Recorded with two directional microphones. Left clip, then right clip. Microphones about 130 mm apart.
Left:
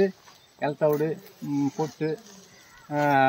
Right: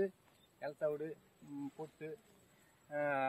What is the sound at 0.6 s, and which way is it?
Speech, 30° right (ahead or behind).